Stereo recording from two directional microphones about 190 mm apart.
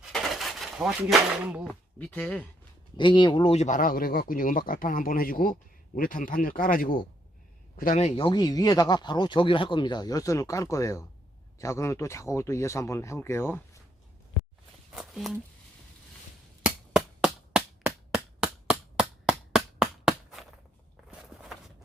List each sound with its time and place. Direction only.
0.0 s a sound: centre (ahead or behind)
2.0 s speech: 5° left (ahead or behind)
3.0 s speech: 25° left (ahead or behind)
14.9 s speech: 5° right (ahead or behind)
16.6 s chop: 5° right (ahead or behind)
21.1 s walk: 5° right (ahead or behind)